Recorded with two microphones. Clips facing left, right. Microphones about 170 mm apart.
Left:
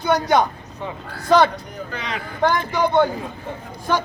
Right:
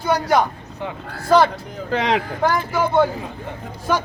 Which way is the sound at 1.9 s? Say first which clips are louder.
Right 12 dB; 90° right.